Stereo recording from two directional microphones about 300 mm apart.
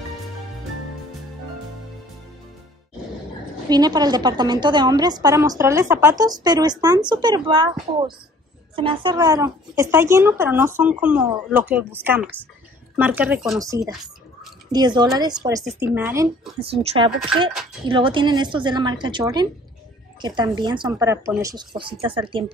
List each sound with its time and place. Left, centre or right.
3.6 s a woman's voice: centre
16.8 s a woman's voice: centre